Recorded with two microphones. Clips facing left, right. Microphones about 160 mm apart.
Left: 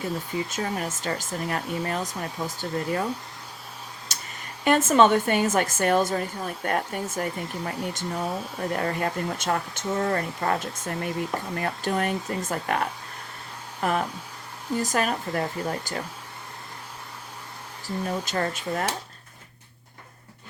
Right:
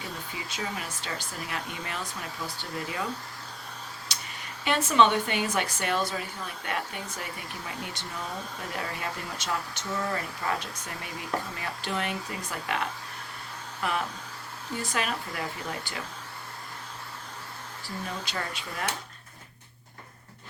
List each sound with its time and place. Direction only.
0.5 s a woman's voice: 45° left (ahead or behind)
4.1 s a sound: 45° left (ahead or behind)
4.6 s a woman's voice: 45° left (ahead or behind)
17.8 s a woman's voice: 45° left (ahead or behind)